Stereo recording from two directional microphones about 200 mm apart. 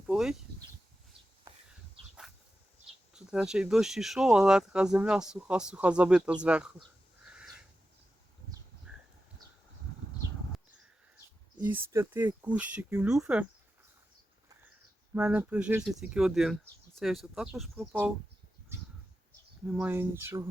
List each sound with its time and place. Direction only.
0.1 s a sound: 5° right (ahead or behind)
3.1 s speech: 5° right (ahead or behind)
7.3 s a sound: 5° right (ahead or behind)
11.6 s speech: 10° right (ahead or behind)
15.1 s speech: 5° right (ahead or behind)
19.6 s speech: 5° right (ahead or behind)